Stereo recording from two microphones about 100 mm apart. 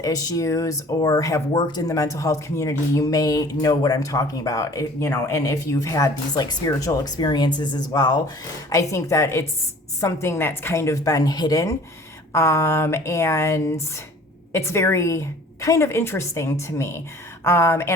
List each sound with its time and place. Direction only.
0.0 s speech: 35° left (ahead or behind)
8.7 s a woman's voice: 30° left (ahead or behind)
12.3 s a woman's voice: 30° left (ahead or behind)